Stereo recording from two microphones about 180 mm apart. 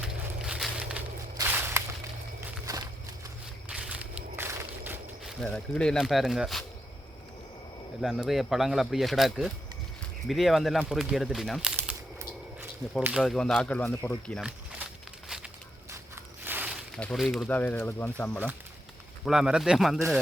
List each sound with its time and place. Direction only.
0.0 s a sound: 5° right (ahead or behind); by 2.8 s 20° right (ahead or behind)
3.7 s a sound: 5° right (ahead or behind)
5.4 s speech: 5° left (ahead or behind)
8.0 s speech: centre (ahead or behind)
13.0 s speech: 10° right (ahead or behind)
13.2 s speech: 5° left (ahead or behind)
15.9 s a sound: 10° right (ahead or behind)
17.0 s speech: centre (ahead or behind)
19.2 s speech: centre (ahead or behind)